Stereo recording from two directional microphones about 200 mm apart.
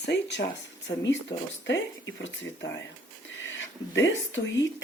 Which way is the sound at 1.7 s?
65° left (ahead or behind).